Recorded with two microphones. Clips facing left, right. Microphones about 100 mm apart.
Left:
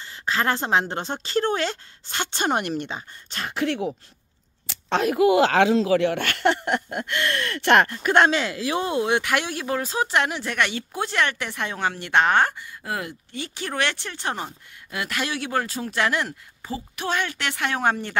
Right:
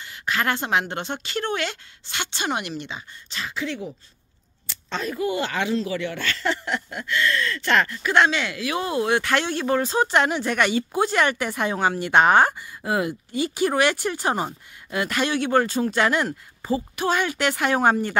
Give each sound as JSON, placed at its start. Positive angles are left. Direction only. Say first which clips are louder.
{"t": 0.0, "sound": "a woman's voice", "louder": "left 1 dB", "side_deg": 30}